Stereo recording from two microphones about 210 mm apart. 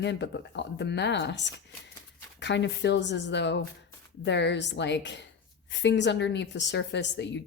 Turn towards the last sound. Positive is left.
turn(degrees=55)  # may be behind; listen again after turning